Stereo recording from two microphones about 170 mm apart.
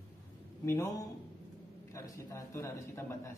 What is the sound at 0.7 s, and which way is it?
A man's voice, 20° left (ahead or behind).